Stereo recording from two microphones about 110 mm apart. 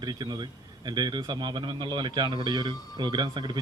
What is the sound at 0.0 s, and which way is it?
A man's voice, 40° right (ahead or behind).